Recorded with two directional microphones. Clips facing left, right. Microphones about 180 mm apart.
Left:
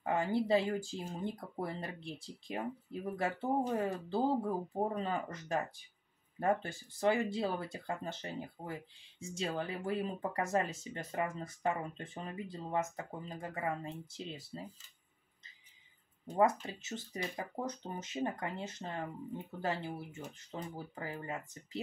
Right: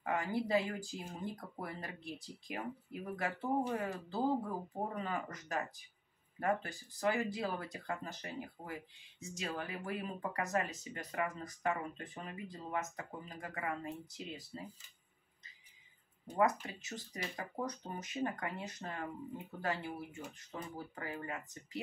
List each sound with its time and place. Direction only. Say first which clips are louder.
0.0 s speech: left 3 dB; 30° left (ahead or behind)
16.3 s speech: left 2 dB; 25° left (ahead or behind)